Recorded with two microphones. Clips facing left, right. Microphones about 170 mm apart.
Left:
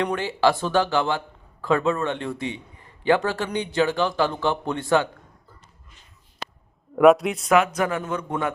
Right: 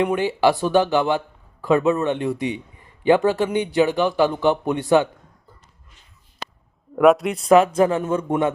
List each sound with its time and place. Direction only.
0.0 s a man's voice: 15° right (ahead or behind)
6.9 s speech: centre (ahead or behind)
7.4 s speech: 30° right (ahead or behind)